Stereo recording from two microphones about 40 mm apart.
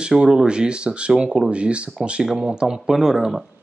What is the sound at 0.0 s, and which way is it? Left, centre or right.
Speech, right.